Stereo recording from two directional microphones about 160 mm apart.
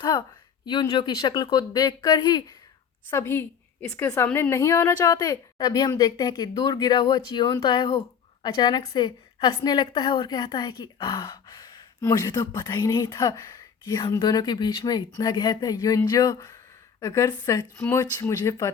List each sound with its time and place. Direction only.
0.6 s a woman's voice: 30° left (ahead or behind)
3.1 s a woman's voice: 15° left (ahead or behind)
17.7 s a woman's voice: 10° left (ahead or behind)